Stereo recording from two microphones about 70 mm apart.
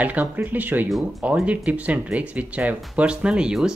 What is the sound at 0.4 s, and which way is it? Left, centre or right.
Speech, right.